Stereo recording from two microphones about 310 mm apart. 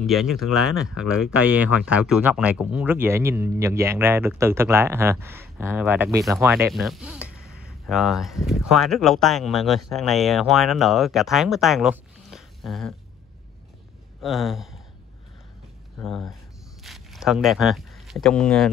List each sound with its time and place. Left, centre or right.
0.0 s speech: centre
7.4 s a sound: right
7.8 s speech: centre
14.2 s speech: centre
16.0 s speech: centre